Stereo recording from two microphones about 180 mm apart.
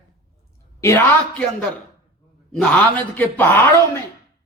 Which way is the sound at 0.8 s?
15° left (ahead or behind).